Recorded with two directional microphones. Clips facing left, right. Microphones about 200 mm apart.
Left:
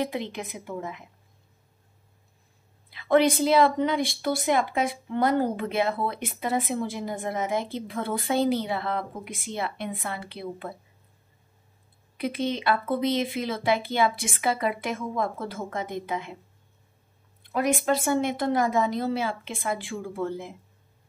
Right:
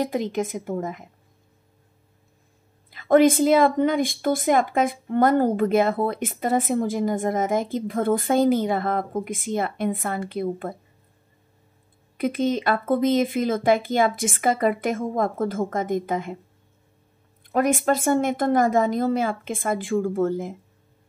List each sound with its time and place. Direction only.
0.0 s speech: 45° right (ahead or behind)
2.9 s speech: 45° right (ahead or behind)
12.2 s speech: 45° right (ahead or behind)
17.4 s speech: 45° right (ahead or behind)